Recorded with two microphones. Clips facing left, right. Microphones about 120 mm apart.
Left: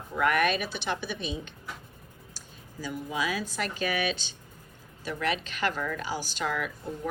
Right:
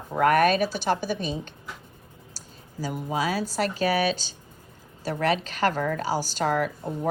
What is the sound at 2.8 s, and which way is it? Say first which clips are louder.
A woman's voice: right 4 dB; 40° right (ahead or behind).